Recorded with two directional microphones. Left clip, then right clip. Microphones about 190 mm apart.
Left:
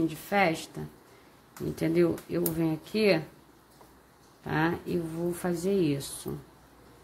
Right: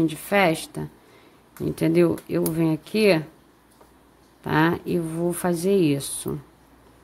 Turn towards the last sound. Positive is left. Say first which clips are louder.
# right 7 dB
turn(degrees=-30)  # may be behind; listen again after turning